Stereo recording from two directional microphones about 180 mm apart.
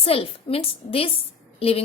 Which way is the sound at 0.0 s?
30° left (ahead or behind).